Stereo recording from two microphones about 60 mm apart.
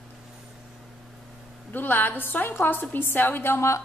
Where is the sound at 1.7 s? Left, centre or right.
Left.